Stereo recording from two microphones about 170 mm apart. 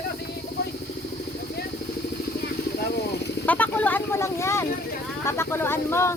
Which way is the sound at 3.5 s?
10° left (ahead or behind).